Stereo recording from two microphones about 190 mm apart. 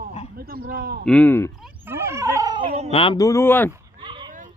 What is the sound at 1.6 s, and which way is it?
Dog, 10° right (ahead or behind).